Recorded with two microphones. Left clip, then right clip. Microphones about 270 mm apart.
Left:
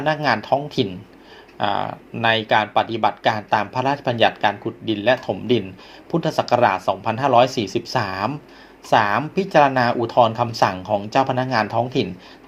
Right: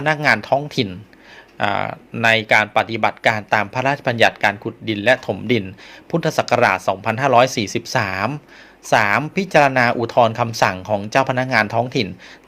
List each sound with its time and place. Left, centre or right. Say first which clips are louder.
0.0 s speech: right 3 dB; right